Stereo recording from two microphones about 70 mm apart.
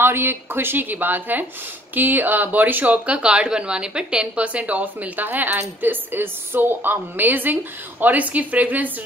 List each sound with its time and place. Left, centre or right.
0.0 s a woman's voice: right